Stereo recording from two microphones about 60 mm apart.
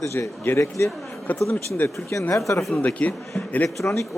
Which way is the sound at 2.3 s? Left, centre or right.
Left.